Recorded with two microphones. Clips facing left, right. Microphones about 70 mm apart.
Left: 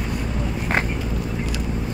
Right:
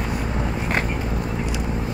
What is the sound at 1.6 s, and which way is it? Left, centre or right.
Boat, right.